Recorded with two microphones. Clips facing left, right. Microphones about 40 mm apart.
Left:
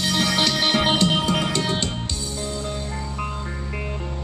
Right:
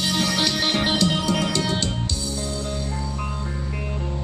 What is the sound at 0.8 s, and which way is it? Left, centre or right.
Music, left.